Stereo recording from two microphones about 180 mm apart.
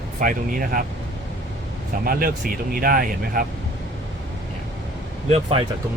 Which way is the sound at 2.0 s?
50° right (ahead or behind).